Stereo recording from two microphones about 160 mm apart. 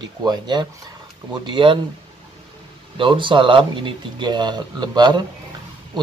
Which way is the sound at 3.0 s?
30° right (ahead or behind).